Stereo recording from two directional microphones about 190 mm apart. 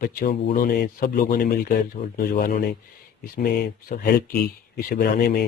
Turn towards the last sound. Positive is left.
turn(degrees=55)  # may be behind; listen again after turning